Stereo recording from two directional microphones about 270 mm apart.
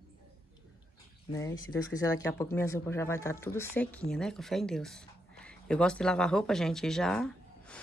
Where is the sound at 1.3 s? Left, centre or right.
Centre.